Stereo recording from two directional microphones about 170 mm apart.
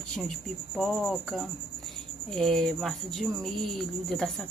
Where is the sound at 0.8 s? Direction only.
Centre (ahead or behind).